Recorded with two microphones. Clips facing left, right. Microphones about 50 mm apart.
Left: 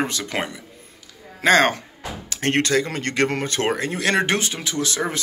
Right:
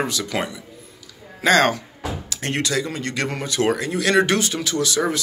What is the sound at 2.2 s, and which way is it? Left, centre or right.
Speech, left.